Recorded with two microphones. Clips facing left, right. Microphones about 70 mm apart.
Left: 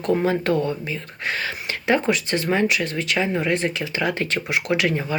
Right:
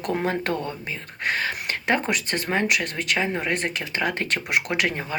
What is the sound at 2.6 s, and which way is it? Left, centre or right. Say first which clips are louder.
Speech: left 2 dB; right.